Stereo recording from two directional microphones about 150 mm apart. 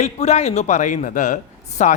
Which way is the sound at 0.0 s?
45° left (ahead or behind).